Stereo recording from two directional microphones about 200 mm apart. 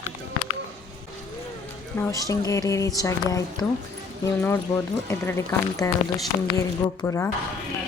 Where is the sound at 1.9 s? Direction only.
15° left (ahead or behind).